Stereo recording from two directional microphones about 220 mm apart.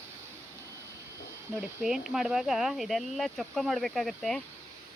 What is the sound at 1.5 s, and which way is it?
Speech, 5° right (ahead or behind).